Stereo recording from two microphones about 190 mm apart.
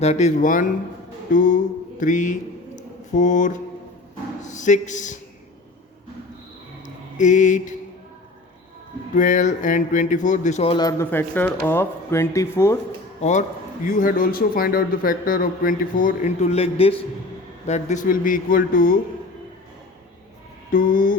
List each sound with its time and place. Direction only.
0.0 s speech: 35° left (ahead or behind)
6.8 s mantra: 40° left (ahead or behind)
9.1 s speech: 40° left (ahead or behind); by 12.8 s 15° left (ahead or behind)
13.8 s speech: 45° left (ahead or behind)
20.7 s speech: 45° left (ahead or behind)